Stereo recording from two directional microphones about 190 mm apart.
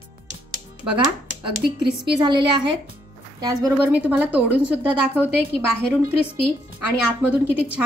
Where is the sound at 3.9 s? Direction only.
10° right (ahead or behind).